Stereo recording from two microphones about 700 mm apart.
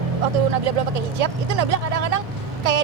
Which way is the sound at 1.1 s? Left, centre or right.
Right.